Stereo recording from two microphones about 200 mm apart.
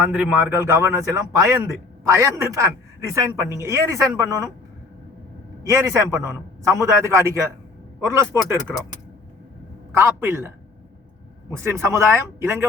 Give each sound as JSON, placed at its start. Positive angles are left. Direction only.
{"t": 0.0, "sound": "a man's voice", "side_deg": -5}
{"t": 5.6, "sound": "a man's voice", "side_deg": -15}
{"t": 9.9, "sound": "a man's voice", "side_deg": -10}
{"t": 11.5, "sound": "a man's voice", "side_deg": -10}